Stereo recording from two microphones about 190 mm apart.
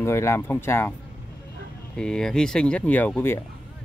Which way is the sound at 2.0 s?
5° left (ahead or behind).